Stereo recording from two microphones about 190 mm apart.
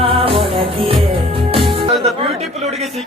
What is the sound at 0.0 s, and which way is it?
Music, 30° right (ahead or behind).